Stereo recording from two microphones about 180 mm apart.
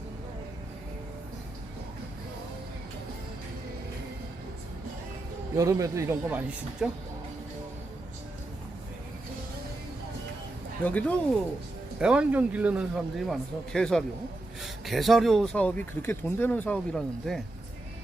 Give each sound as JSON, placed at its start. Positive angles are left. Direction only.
{"t": 5.5, "sound": "speech", "side_deg": -15}
{"t": 10.8, "sound": "speech", "side_deg": 10}
{"t": 11.9, "sound": "speech", "side_deg": -5}